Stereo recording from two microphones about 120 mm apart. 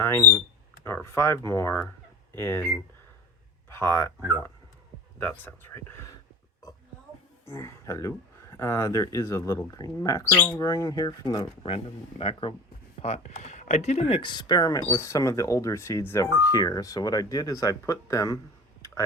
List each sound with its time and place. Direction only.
0.0 s speech: 20° left (ahead or behind)
3.7 s speech: 20° left (ahead or behind)
5.2 s speech: 15° left (ahead or behind)
7.4 s speech: 25° left (ahead or behind)
11.6 s speech: 50° left (ahead or behind)
13.0 s speech: 75° left (ahead or behind)
14.2 s speech: 40° left (ahead or behind)